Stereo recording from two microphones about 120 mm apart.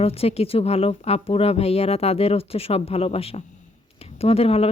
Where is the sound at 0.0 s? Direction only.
55° left (ahead or behind).